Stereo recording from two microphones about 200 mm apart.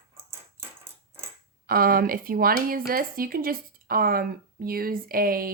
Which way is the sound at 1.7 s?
45° right (ahead or behind).